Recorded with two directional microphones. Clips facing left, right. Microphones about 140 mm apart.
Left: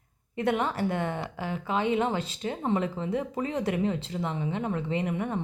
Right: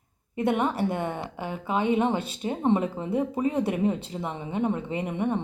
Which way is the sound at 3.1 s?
10° right (ahead or behind).